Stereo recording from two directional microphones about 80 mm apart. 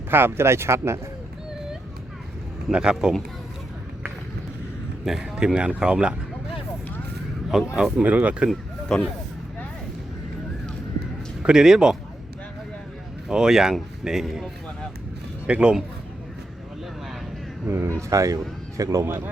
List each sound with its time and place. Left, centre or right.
0.1 s speech: right
2.7 s speech: centre
5.0 s speech: centre
7.5 s speech: centre
8.9 s speech: centre
11.4 s speech: centre
13.2 s speech: centre
17.7 s speech: right
18.1 s speech: right
19.0 s speech: right